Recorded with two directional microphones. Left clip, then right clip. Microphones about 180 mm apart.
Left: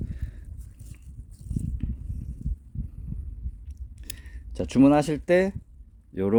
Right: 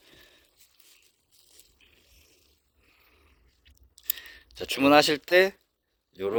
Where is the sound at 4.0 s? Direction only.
5° left (ahead or behind).